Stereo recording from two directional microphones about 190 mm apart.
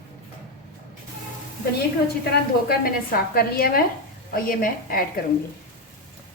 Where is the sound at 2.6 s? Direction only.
50° left (ahead or behind).